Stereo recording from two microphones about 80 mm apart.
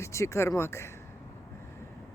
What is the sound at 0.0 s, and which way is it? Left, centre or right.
Speech, left.